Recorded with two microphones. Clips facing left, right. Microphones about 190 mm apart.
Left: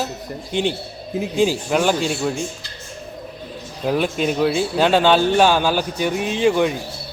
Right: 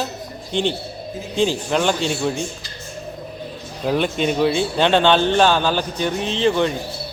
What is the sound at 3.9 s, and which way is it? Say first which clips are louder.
A man's voice: even; 5° left (ahead or behind).